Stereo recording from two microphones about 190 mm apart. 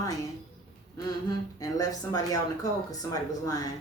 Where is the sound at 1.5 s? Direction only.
20° left (ahead or behind).